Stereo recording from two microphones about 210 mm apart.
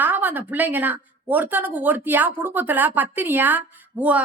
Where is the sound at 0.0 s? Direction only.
10° right (ahead or behind).